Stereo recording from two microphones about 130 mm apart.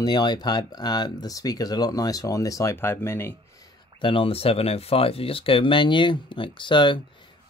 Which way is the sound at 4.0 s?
45° left (ahead or behind).